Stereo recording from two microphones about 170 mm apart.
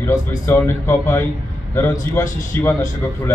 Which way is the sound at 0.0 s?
20° left (ahead or behind).